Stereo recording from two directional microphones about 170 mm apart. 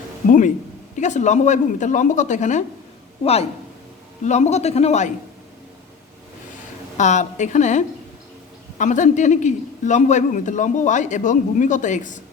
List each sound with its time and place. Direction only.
0.3 s a man's voice: 50° left (ahead or behind)
4.3 s a man's voice: 40° left (ahead or behind)
6.9 s a man's voice: 45° left (ahead or behind)